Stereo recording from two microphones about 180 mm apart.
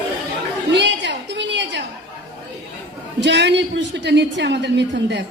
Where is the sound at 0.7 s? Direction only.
75° right (ahead or behind).